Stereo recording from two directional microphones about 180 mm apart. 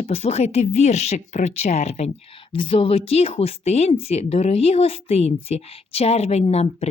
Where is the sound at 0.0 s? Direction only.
35° left (ahead or behind).